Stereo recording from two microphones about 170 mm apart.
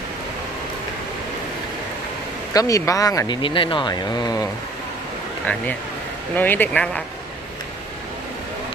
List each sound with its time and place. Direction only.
2.5 s speech: 20° left (ahead or behind)
6.3 s speech: 10° left (ahead or behind)